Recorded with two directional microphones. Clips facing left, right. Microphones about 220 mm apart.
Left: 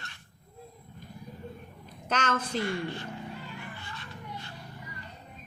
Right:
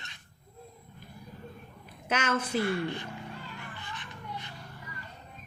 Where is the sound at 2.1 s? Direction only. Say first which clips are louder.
Right 1 dB; 10° right (ahead or behind).